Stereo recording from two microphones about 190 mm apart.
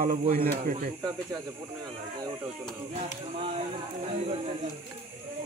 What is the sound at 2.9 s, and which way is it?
Speech, 35° right (ahead or behind).